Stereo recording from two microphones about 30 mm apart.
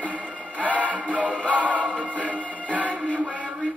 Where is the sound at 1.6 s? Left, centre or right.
Right.